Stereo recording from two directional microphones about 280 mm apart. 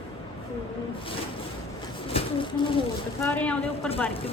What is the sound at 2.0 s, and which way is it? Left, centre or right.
Speech, centre.